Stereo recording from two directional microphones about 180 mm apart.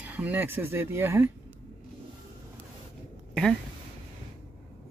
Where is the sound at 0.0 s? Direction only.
10° right (ahead or behind).